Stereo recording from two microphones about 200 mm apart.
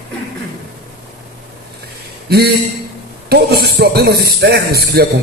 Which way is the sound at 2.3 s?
50° right (ahead or behind).